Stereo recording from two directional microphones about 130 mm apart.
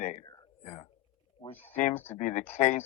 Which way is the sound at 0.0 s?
65° left (ahead or behind).